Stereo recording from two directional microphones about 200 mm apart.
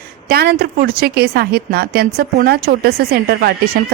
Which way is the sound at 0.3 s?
50° right (ahead or behind).